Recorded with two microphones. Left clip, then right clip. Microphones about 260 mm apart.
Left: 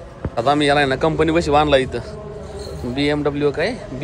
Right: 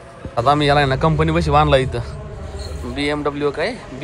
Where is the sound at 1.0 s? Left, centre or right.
Centre.